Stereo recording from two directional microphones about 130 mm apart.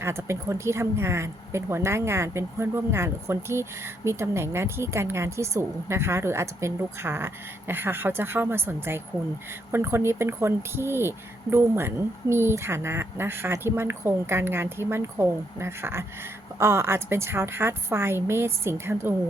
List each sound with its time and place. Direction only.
0.0 s a woman's voice: 20° right (ahead or behind)